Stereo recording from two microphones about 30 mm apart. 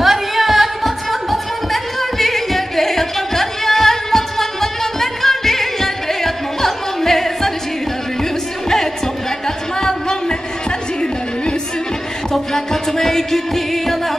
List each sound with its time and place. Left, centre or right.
0.0 s music: centre
12.3 s music: centre